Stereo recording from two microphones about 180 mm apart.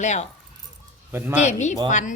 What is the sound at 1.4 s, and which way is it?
Speech, 40° left (ahead or behind).